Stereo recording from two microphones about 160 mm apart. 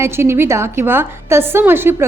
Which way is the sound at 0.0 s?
15° right (ahead or behind).